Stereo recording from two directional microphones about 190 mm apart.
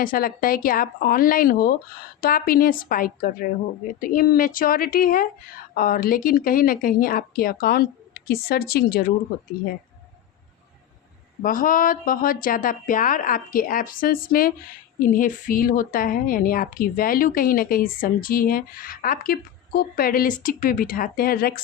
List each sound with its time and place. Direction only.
0.0 s a woman's voice: 50° left (ahead or behind)
11.4 s a woman's voice: 45° left (ahead or behind)